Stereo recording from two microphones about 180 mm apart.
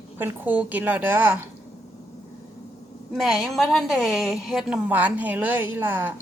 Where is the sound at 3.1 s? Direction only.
Centre (ahead or behind).